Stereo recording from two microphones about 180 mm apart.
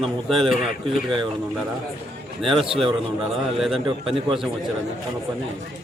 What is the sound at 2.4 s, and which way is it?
Speech, 30° right (ahead or behind).